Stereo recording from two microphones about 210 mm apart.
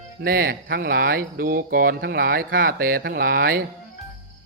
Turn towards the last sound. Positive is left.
turn(degrees=-45)  # may be behind; listen again after turning